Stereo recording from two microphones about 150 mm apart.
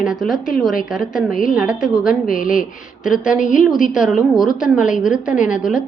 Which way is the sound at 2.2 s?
65° left (ahead or behind).